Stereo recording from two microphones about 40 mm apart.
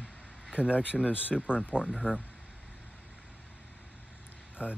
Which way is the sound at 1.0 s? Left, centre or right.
Left.